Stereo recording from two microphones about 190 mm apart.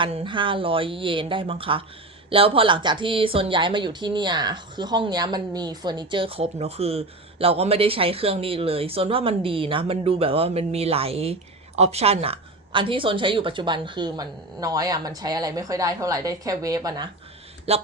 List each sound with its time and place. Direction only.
0.0 s speech: 25° right (ahead or behind)
17.7 s speech: 30° right (ahead or behind)